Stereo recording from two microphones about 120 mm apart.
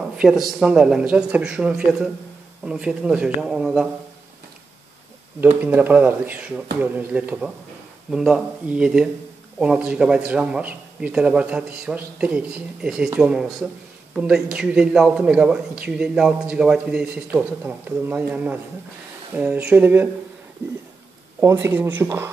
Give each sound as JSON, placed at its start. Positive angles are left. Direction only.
{"t": 0.2, "sound": "a man's voice", "side_deg": -5}
{"t": 5.6, "sound": "a man's voice", "side_deg": -15}
{"t": 21.4, "sound": "speech", "side_deg": -25}